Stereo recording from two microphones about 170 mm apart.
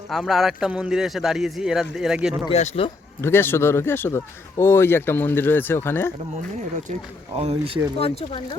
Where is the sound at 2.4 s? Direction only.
40° left (ahead or behind).